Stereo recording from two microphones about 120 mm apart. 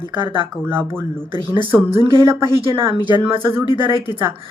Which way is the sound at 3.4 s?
20° right (ahead or behind).